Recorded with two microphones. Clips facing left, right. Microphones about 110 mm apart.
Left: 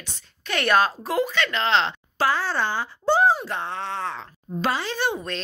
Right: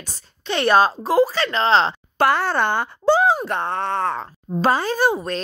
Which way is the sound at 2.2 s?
60° right (ahead or behind).